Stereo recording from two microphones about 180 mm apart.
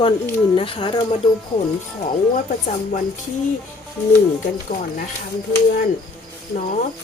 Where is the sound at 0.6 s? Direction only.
30° left (ahead or behind).